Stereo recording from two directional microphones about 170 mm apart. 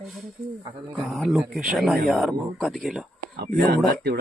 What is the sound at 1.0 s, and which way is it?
Speech, centre (ahead or behind).